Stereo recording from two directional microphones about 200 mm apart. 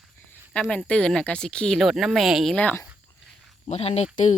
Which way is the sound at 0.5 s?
5° left (ahead or behind).